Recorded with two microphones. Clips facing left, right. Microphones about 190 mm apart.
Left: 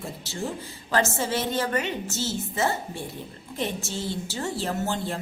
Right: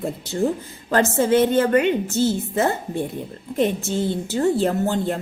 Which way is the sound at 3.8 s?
55° right (ahead or behind).